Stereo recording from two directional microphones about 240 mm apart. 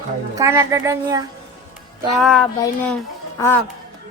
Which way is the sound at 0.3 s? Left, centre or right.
Centre.